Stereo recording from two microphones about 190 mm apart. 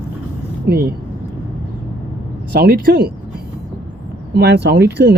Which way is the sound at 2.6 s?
55° right (ahead or behind).